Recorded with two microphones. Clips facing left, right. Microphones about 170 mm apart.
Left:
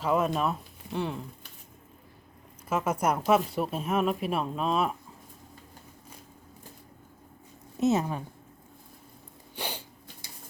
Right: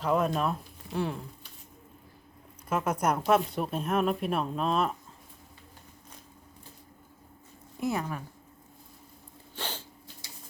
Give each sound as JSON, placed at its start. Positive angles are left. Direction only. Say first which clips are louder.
{"t": 0.0, "sound": "speech", "louder": "left 1 dB", "side_deg": 5}
{"t": 2.6, "sound": "speech", "louder": "left 1 dB", "side_deg": 5}
{"t": 7.8, "sound": "speech", "louder": "left 6 dB", "side_deg": 25}
{"t": 9.6, "sound": "a sound", "louder": "left 2 dB", "side_deg": 15}